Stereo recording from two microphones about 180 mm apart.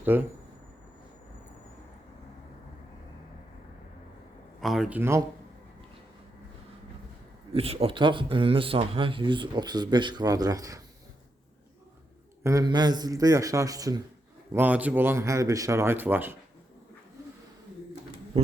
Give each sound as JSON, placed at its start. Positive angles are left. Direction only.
{"t": 0.0, "sound": "speech", "side_deg": -10}
{"t": 4.6, "sound": "speech", "side_deg": 0}
{"t": 7.5, "sound": "a man's voice", "side_deg": -35}
{"t": 12.4, "sound": "a man's voice", "side_deg": -15}